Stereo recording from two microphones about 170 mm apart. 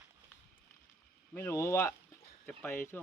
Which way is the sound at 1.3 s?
15° left (ahead or behind).